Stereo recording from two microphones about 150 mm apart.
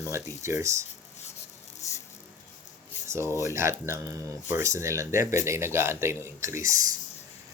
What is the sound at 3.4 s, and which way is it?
Speech, 20° right (ahead or behind).